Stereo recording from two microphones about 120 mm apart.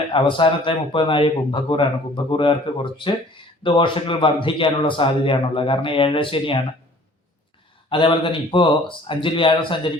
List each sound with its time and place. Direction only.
0.1 s a man's voice: 45° left (ahead or behind)
7.9 s a man's voice: 45° left (ahead or behind)